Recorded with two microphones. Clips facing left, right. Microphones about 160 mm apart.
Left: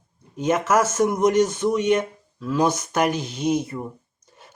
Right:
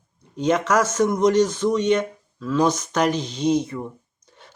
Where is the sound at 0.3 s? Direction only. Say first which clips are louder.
Even; 5° left (ahead or behind).